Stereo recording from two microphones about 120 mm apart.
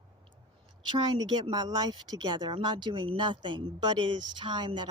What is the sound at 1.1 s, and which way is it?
Speech, 35° right (ahead or behind).